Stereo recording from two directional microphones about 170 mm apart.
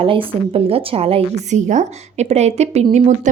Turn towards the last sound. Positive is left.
turn(degrees=-45)  # may be behind; listen again after turning